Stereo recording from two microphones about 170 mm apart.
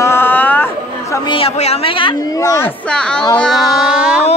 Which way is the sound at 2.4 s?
15° left (ahead or behind).